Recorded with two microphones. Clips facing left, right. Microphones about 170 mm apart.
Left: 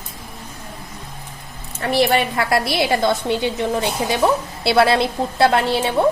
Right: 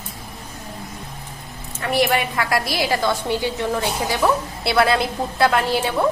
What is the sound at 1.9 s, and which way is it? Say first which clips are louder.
A woman's voice: left 2 dB; 30° left (ahead or behind).